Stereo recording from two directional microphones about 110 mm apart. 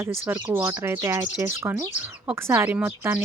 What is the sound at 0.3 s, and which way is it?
Speech, 15° right (ahead or behind).